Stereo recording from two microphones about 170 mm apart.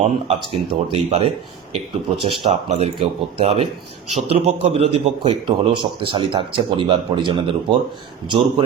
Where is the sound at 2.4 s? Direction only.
40° right (ahead or behind).